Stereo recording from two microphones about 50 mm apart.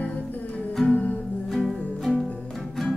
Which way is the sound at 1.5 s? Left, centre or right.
Centre.